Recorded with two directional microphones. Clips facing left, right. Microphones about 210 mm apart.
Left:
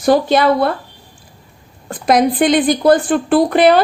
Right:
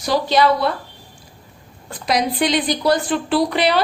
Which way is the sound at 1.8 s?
50° left (ahead or behind).